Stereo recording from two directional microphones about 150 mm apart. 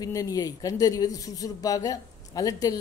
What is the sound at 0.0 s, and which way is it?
Speech, 25° left (ahead or behind).